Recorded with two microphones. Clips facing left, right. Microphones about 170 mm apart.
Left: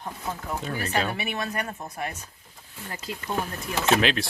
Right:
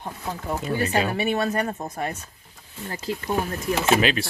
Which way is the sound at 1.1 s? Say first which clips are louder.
Right 7 dB; 35° right (ahead or behind).